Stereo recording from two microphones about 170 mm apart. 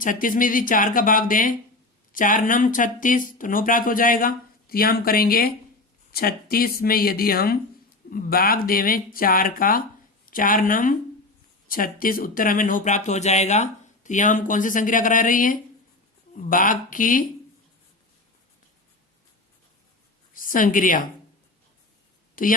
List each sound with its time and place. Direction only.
0.0 s speech: 50° left (ahead or behind)
20.3 s a woman's voice: 55° left (ahead or behind)
22.4 s speech: 55° left (ahead or behind)